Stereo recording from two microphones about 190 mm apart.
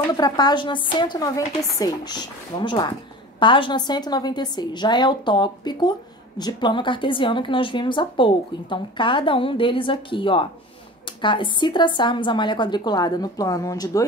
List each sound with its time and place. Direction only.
0.1 s a woman's voice: 20° left (ahead or behind)